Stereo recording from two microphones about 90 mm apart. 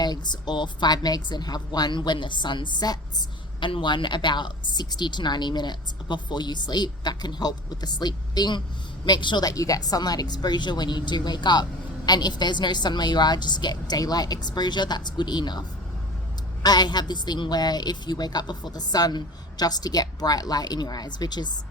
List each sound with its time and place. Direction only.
0.0 s speech: 55° left (ahead or behind)
3.6 s a woman's voice: 65° left (ahead or behind)
16.6 s a woman's voice: 50° left (ahead or behind)